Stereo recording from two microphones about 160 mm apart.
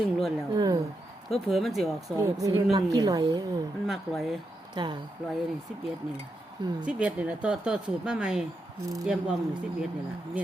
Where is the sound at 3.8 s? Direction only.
Centre (ahead or behind).